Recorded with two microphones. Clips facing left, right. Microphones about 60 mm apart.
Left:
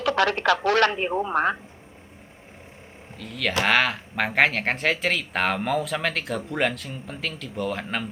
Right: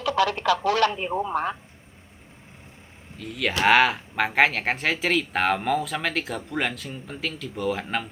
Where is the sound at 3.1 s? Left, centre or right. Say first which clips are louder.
Even; centre.